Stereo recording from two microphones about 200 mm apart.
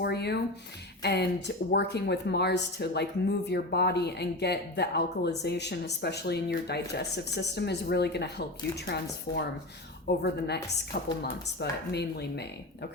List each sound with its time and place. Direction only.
0.0 s a sound: 55° left (ahead or behind)
1.0 s speech: 55° left (ahead or behind)
10.1 s speech: 55° left (ahead or behind)